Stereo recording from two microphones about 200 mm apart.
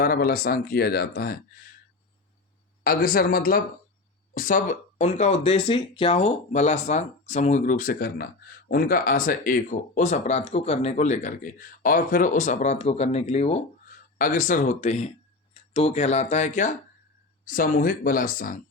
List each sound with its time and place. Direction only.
0.0 s speech: 50° left (ahead or behind)
2.8 s speech: 45° left (ahead or behind)